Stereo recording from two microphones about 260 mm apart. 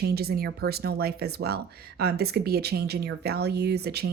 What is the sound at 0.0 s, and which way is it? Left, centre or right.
Speech, right.